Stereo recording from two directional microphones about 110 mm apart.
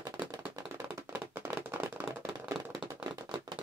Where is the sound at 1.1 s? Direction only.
25° right (ahead or behind).